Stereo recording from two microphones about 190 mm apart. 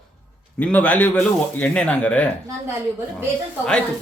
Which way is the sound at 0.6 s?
5° left (ahead or behind).